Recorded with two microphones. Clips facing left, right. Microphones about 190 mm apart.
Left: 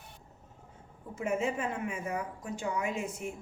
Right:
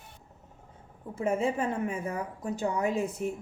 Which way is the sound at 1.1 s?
35° right (ahead or behind).